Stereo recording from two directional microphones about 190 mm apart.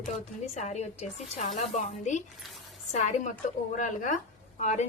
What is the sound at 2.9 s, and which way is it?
A woman's voice, 40° left (ahead or behind).